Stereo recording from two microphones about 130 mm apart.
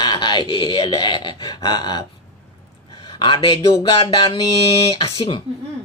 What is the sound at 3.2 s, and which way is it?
Speech, 35° left (ahead or behind).